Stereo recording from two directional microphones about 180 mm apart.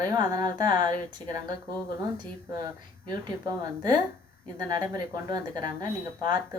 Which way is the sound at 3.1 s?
25° right (ahead or behind).